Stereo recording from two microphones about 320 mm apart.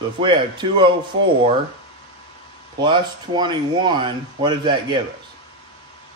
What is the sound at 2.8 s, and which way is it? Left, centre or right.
Speech, centre.